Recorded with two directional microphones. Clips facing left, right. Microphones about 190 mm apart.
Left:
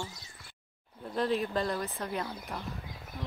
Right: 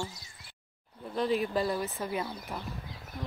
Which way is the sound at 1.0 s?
Centre (ahead or behind).